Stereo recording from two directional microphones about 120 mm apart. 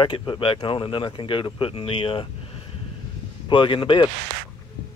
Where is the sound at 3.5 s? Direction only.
45° left (ahead or behind).